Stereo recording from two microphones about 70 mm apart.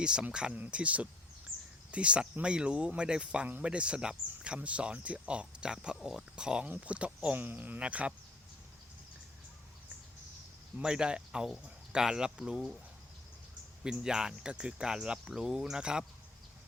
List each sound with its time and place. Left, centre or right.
0.0 s speech: centre
10.8 s speech: centre
13.8 s speech: centre